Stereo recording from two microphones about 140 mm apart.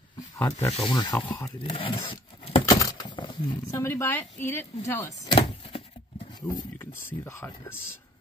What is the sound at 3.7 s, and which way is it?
Speech, 20° left (ahead or behind).